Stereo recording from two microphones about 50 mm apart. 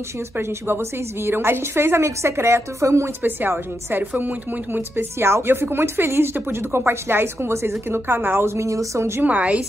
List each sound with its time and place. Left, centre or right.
0.4 s a woman's voice: right
3.2 s speech: right
5.2 s speech: right
8.5 s a woman's voice: right
9.2 s a woman's voice: right